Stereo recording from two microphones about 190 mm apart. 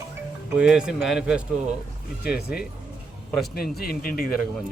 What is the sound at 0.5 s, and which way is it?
Speech, 5° right (ahead or behind).